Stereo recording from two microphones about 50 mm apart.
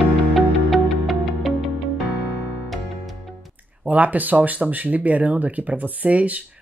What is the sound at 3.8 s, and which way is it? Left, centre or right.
Speech, right.